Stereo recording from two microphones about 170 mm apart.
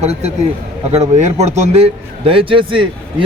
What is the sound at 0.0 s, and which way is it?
A man's voice, 40° right (ahead or behind).